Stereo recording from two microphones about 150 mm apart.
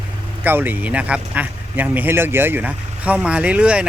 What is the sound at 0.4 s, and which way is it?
A man's voice, 10° right (ahead or behind).